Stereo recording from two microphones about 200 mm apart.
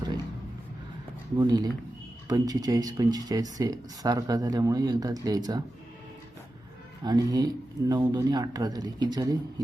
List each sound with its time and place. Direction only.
1.4 s speech: 20° right (ahead or behind)
7.0 s speech: 20° right (ahead or behind)